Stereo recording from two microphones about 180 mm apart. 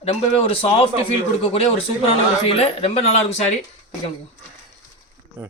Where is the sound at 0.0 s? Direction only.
35° left (ahead or behind).